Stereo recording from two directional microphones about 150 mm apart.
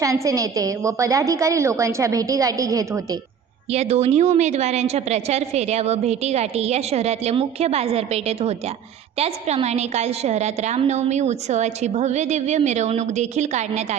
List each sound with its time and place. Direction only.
0.0 s a woman's voice: 20° right (ahead or behind)
3.7 s a woman's voice: 45° right (ahead or behind)